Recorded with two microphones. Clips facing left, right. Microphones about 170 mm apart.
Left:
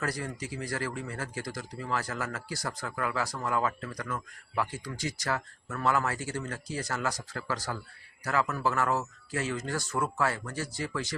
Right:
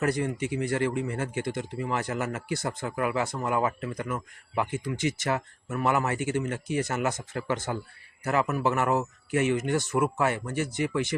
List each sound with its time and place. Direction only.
0.0 s speech: 25° right (ahead or behind)